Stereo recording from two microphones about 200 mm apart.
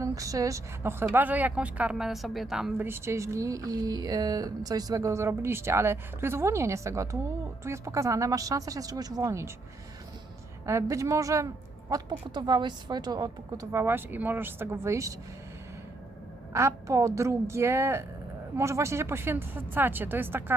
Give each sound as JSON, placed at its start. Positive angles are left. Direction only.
{"t": 0.0, "sound": "a woman's voice", "side_deg": -15}
{"t": 10.7, "sound": "a woman's voice", "side_deg": -15}
{"t": 16.5, "sound": "a woman's voice", "side_deg": -15}